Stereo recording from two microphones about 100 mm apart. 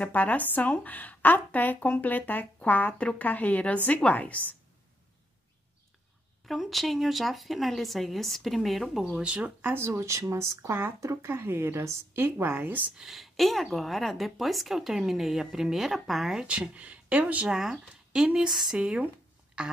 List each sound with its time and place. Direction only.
0.0 s a woman's voice: 15° left (ahead or behind)
6.4 s speech: centre (ahead or behind); by 12.9 s 15° right (ahead or behind)
12.9 s speech: 5° right (ahead or behind)